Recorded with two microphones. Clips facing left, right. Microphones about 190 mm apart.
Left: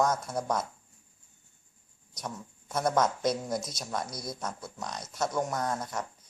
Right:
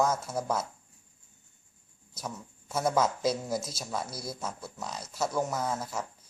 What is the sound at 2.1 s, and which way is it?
Speech, 5° right (ahead or behind).